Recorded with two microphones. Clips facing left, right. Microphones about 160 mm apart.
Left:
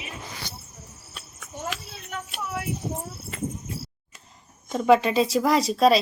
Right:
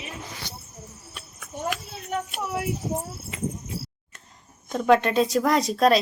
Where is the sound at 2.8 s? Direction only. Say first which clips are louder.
Right 3 dB; centre (ahead or behind).